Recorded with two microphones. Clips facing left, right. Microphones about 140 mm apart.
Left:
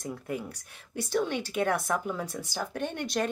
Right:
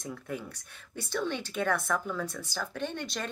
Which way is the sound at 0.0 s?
10° left (ahead or behind).